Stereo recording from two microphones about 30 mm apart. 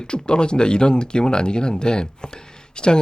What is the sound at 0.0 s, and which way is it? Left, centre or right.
Speech, left.